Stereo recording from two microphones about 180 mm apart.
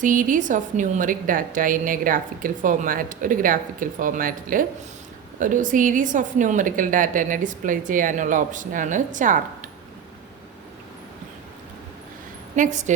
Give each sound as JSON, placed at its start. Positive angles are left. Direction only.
{"t": 0.0, "sound": "a woman's voice", "side_deg": -45}
{"t": 12.5, "sound": "a woman's voice", "side_deg": -40}